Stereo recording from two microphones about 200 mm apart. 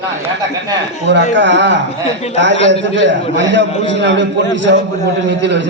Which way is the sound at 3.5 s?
65° right (ahead or behind).